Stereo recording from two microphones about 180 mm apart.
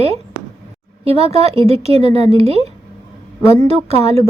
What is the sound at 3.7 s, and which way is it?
Speech, 35° right (ahead or behind).